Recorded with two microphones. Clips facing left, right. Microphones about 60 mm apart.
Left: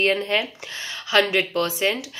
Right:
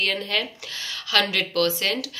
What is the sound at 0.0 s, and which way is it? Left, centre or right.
Speech, left.